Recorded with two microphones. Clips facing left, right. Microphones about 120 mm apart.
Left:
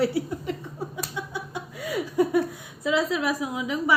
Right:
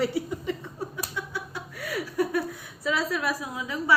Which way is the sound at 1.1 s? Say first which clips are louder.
Left 2 dB; 20° left (ahead or behind).